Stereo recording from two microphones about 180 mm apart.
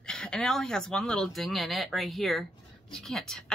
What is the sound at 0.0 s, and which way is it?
Speech, 5° left (ahead or behind).